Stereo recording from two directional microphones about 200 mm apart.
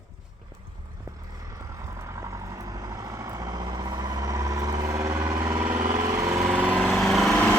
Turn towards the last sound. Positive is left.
turn(degrees=5)  # may be behind; listen again after turning